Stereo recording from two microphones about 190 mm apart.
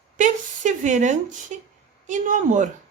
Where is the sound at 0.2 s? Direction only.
40° right (ahead or behind).